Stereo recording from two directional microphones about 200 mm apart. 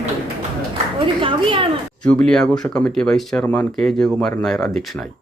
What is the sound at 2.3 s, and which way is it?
Speech, 5° left (ahead or behind).